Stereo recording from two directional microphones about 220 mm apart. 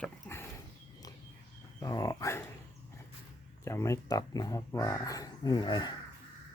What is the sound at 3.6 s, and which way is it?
Speech, 10° left (ahead or behind).